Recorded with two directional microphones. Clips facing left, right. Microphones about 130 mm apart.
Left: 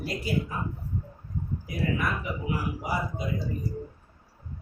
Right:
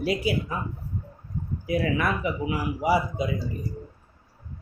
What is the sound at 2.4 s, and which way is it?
Speech, 85° right.